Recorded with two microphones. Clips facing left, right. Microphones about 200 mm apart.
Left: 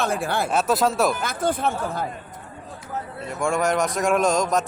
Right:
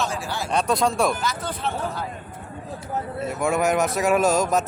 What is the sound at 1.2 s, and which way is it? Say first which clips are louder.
Speech: left 4 dB; 50° left (ahead or behind).